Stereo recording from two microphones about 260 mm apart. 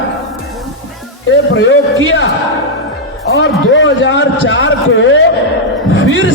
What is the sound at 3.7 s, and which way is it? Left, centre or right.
A man's voice, left.